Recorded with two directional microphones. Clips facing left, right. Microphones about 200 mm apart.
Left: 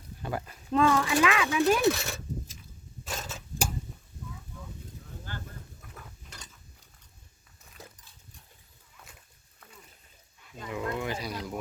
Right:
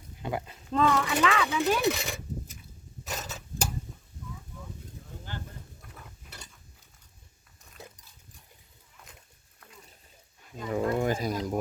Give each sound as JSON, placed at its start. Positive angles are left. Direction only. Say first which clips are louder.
{"t": 0.2, "sound": "a sound", "louder": "right 1 dB", "side_deg": -20}
{"t": 0.7, "sound": "speech", "louder": "left 1 dB", "side_deg": 10}
{"t": 1.6, "sound": "speech", "louder": "left 4 dB", "side_deg": 0}
{"t": 1.9, "sound": "speech", "louder": "left 2 dB", "side_deg": -15}
{"t": 3.1, "sound": "tick-tock", "louder": "even", "side_deg": -5}
{"t": 10.7, "sound": "a sound", "louder": "right 6 dB", "side_deg": -40}